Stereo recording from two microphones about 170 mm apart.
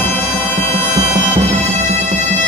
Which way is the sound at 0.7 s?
40° right (ahead or behind).